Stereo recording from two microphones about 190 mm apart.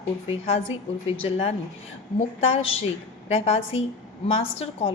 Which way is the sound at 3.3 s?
35° left (ahead or behind).